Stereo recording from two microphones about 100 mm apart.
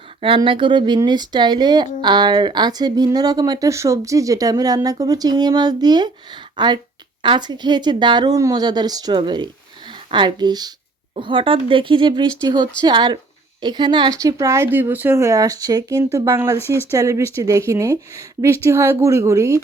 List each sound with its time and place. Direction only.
0.2 s speech: 60° right (ahead or behind); by 10.7 s 45° right (ahead or behind)
11.1 s speech: 55° right (ahead or behind)
14.1 s speech: 35° right (ahead or behind)